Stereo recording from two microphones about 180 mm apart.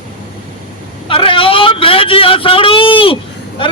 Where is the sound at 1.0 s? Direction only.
30° left (ahead or behind).